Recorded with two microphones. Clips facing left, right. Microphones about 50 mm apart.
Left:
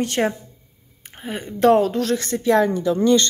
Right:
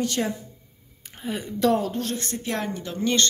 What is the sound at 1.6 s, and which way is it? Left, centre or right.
Speech, left.